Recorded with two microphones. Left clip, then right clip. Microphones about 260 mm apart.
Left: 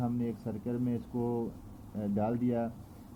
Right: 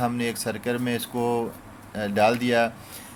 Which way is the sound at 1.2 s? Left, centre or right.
Right.